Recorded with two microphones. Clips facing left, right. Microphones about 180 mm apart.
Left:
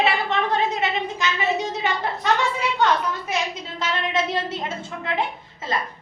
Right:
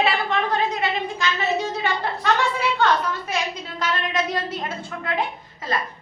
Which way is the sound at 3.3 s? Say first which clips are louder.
Even; 25° left (ahead or behind).